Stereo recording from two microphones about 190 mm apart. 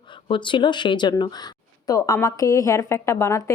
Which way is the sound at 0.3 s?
25° left (ahead or behind).